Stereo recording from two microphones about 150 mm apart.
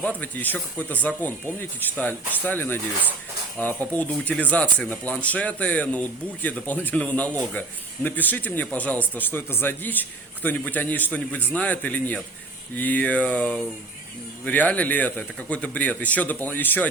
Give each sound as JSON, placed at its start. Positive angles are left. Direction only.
{"t": 0.2, "sound": "a man's voice", "side_deg": 10}